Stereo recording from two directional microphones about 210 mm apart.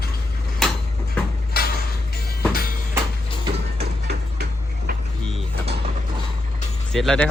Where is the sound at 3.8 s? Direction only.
50° right (ahead or behind).